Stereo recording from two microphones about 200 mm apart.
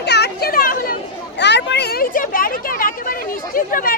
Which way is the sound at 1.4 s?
60° left (ahead or behind).